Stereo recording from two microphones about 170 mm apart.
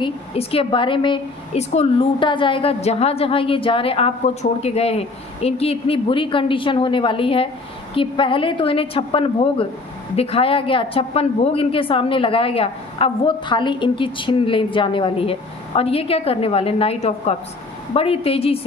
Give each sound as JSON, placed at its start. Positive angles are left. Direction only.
{"t": 0.0, "sound": "a woman's voice", "side_deg": 35}